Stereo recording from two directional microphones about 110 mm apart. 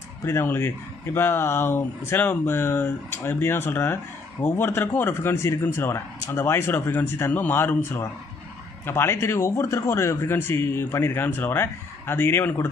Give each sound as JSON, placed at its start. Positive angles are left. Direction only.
{"t": 0.3, "sound": "speech", "side_deg": 20}